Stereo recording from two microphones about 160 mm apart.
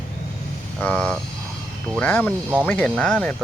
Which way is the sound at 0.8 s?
10° left (ahead or behind).